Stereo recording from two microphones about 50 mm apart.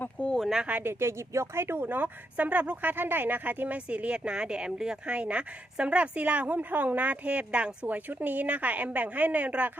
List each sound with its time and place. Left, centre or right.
0.3 s a sound: centre
0.7 s speech: right
3.8 s speech: right